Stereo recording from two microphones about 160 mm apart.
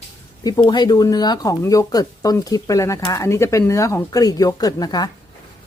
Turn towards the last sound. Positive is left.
turn(degrees=25)  # may be behind; listen again after turning